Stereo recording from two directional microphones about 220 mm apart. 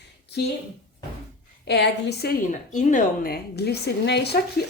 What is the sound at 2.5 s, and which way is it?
A woman's voice, 35° left (ahead or behind).